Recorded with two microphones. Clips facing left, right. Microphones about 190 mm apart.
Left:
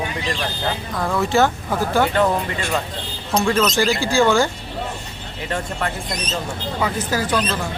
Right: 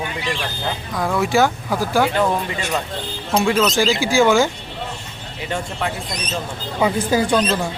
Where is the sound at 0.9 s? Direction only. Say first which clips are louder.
Right 1 dB; centre (ahead or behind).